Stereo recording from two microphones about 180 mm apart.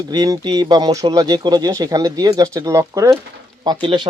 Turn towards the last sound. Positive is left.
turn(degrees=-25)  # may be behind; listen again after turning